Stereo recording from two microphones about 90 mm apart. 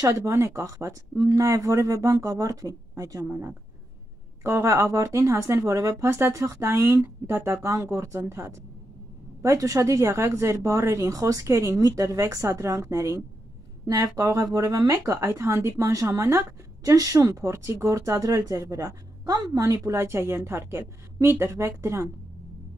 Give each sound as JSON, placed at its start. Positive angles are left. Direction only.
{"t": 0.0, "sound": "speech", "side_deg": -35}